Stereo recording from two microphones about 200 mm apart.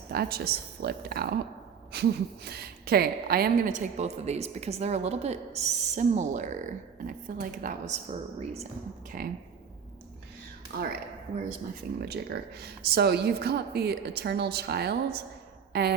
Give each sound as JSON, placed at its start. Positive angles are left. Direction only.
{"t": 0.1, "sound": "a woman's voice", "side_deg": -50}
{"t": 8.1, "sound": "a woman's voice", "side_deg": -30}
{"t": 9.1, "sound": "speech", "side_deg": -45}
{"t": 10.7, "sound": "speech", "side_deg": -50}
{"t": 11.9, "sound": "speech", "side_deg": -50}